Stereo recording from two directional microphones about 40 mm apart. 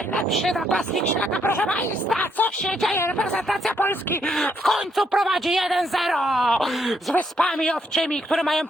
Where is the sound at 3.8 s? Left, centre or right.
Left.